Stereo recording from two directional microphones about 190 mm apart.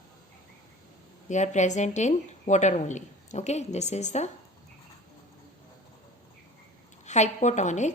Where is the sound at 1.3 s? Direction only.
40° left (ahead or behind).